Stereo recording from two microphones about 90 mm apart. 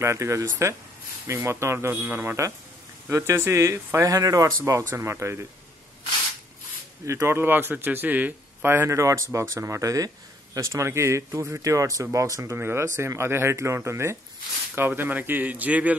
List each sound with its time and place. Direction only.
0.0 s a man's voice: 30° right (ahead or behind)
7.1 s a man's voice: 30° right (ahead or behind)